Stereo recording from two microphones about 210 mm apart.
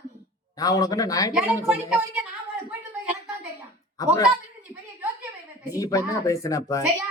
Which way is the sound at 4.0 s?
15° left (ahead or behind).